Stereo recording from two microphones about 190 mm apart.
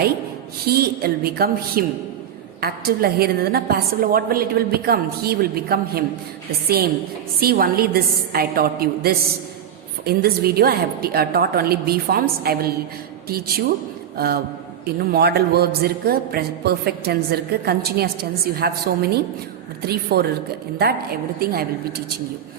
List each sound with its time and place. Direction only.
0.6 s a woman's voice: 55° right (ahead or behind)
14.2 s a man's voice: 55° right (ahead or behind)
19.8 s a man's voice: 55° right (ahead or behind)